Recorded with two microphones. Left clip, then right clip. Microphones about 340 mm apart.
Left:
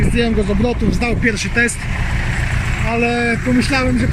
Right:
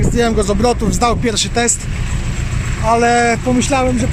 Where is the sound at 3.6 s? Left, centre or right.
Centre.